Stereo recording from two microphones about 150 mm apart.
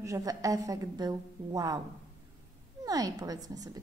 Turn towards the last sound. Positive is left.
turn(degrees=-25)  # may be behind; listen again after turning